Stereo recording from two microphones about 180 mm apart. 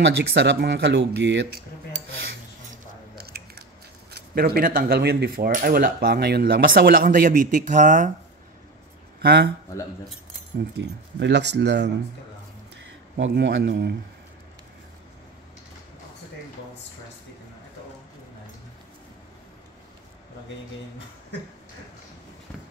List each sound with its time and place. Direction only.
0.0 s speech: 75° right (ahead or behind)
3.2 s biting: 60° right (ahead or behind)
4.1 s speech: 60° right (ahead or behind); by 8.1 s 45° right (ahead or behind)
9.2 s speech: 60° right (ahead or behind)
10.6 s speech: 75° right (ahead or behind)
13.2 s speech: 85° right; by 13.9 s 70° right (ahead or behind)